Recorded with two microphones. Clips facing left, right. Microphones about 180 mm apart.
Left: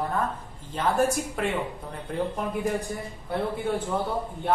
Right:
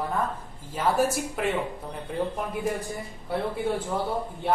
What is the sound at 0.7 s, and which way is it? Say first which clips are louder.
Speech: even; 5° right (ahead or behind).